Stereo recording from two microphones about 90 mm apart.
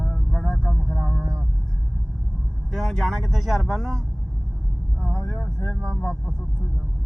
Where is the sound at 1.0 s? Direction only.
10° left (ahead or behind).